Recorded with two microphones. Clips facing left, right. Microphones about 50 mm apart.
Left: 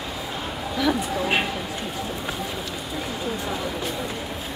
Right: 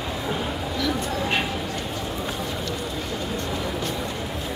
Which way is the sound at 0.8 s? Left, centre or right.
Centre.